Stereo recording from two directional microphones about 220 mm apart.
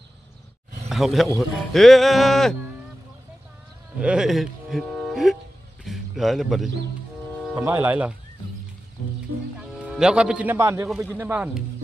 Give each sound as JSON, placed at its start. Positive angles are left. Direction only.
{"t": 0.8, "sound": "speech", "side_deg": 0}
{"t": 1.7, "sound": "music", "side_deg": 0}
{"t": 4.0, "sound": "a man's voice", "side_deg": -5}
{"t": 9.8, "sound": "a man's voice", "side_deg": -5}